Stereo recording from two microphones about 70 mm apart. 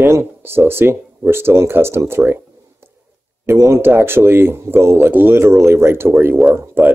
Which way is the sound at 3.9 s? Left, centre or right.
Right.